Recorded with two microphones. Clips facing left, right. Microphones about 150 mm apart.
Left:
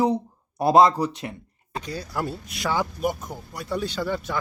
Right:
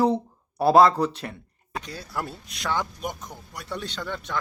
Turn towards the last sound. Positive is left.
turn(degrees=5)  # may be behind; listen again after turning